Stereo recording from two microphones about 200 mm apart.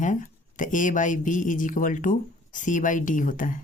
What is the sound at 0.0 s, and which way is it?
Speech, 40° left (ahead or behind).